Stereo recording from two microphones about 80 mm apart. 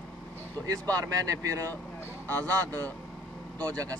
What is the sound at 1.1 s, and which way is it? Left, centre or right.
Speech, right.